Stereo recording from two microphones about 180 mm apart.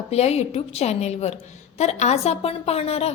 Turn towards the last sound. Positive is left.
turn(degrees=35)  # may be behind; listen again after turning